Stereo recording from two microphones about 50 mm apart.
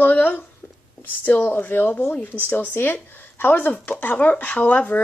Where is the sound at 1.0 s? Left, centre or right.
Left.